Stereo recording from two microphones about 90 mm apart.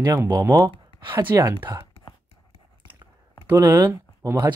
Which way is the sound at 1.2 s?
25° right (ahead or behind).